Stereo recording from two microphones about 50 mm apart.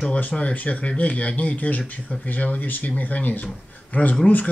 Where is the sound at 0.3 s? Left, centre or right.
Left.